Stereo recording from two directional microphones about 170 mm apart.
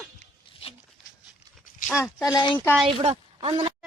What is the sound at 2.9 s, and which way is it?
Speech, 35° right (ahead or behind).